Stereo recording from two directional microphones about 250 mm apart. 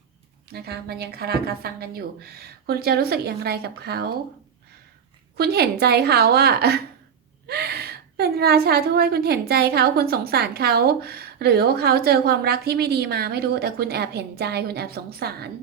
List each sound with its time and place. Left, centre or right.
0.5 s a woman's voice: right
5.4 s a woman's voice: right